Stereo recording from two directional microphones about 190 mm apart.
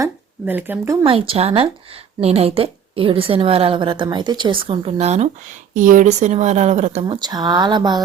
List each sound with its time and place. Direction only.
0.0 s speech: 10° right (ahead or behind)
1.0 s a woman's voice: 30° right (ahead or behind)
7.0 s a woman's voice: 20° right (ahead or behind)